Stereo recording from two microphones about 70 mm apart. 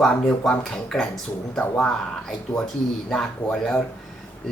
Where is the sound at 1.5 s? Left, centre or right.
Centre.